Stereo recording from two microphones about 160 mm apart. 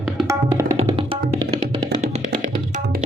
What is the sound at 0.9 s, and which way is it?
Music, 35° right (ahead or behind).